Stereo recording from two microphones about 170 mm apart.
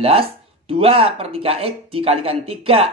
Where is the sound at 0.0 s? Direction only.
35° right (ahead or behind).